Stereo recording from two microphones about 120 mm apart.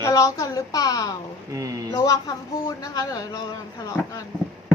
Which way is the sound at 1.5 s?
30° right (ahead or behind).